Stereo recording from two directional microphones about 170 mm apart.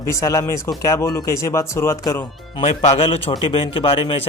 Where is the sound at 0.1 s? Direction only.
20° left (ahead or behind).